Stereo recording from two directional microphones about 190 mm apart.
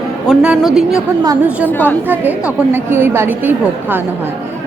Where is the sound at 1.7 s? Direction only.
10° left (ahead or behind).